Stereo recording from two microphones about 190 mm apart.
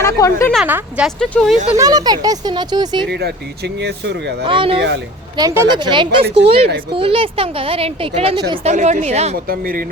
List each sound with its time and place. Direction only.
0.0 s speech: 15° left (ahead or behind)
0.5 s speech: 5° right (ahead or behind)
1.7 s speech: 20° right (ahead or behind)
3.1 s speech: 60° right (ahead or behind)
4.4 s speech: 25° right (ahead or behind)
6.2 s speech: 60° right (ahead or behind)
6.9 s a woman's voice: 30° right (ahead or behind)
9.5 s speech: 50° right (ahead or behind)